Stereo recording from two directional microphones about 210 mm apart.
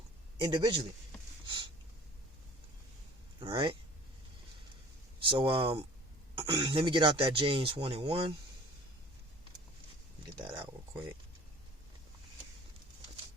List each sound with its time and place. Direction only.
0.3 s speech: 20° right (ahead or behind)
3.4 s speech: 25° right (ahead or behind)
5.3 s speech: 25° right (ahead or behind)
10.3 s speech: 20° right (ahead or behind)